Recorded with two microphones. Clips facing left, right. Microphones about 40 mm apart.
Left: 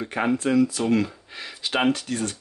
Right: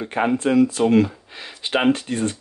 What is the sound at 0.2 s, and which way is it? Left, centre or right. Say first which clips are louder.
Speech: right 3 dB; right.